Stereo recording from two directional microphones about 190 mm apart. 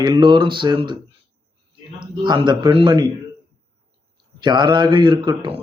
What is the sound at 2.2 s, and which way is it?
Speech, 25° right (ahead or behind).